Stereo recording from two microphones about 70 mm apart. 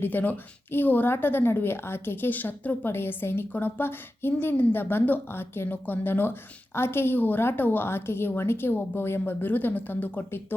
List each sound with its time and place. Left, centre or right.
0.0 s a woman's voice: left